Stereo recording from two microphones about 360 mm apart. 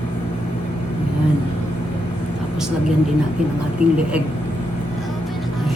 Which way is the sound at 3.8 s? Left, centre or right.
Centre.